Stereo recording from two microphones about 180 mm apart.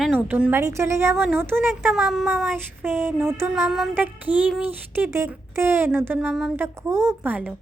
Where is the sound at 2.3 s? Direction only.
Centre (ahead or behind).